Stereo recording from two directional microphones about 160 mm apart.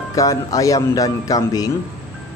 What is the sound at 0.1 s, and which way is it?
A man's voice, 20° left (ahead or behind).